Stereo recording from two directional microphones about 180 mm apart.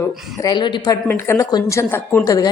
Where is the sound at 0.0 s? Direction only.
20° left (ahead or behind).